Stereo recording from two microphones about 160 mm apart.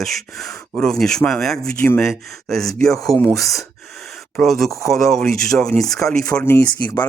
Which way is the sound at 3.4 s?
Centre (ahead or behind).